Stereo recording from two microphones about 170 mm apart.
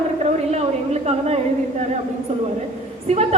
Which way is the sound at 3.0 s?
40° right (ahead or behind).